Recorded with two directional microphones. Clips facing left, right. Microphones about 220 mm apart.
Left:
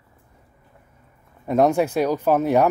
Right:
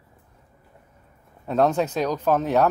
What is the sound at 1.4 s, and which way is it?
Speech, 10° left (ahead or behind).